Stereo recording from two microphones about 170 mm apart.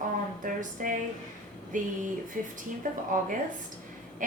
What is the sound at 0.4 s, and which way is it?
A woman's voice, 50° right (ahead or behind).